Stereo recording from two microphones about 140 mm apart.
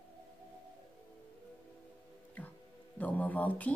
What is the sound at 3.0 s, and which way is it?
Speech, 10° left (ahead or behind).